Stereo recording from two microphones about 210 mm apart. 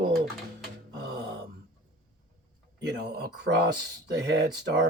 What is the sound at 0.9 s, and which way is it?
Gasp, 50° right (ahead or behind).